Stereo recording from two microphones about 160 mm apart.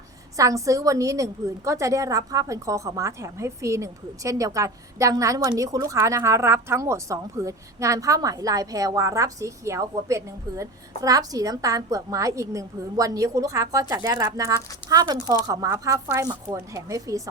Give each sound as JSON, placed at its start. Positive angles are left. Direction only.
{"t": 0.3, "sound": "a woman's voice", "side_deg": -20}